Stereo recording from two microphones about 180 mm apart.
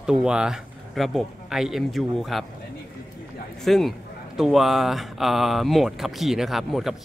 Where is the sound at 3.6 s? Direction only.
Centre (ahead or behind).